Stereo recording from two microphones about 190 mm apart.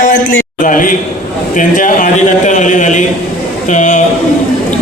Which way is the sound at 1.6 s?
45° left (ahead or behind).